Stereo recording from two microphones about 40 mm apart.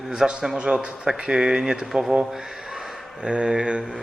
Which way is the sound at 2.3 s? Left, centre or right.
Centre.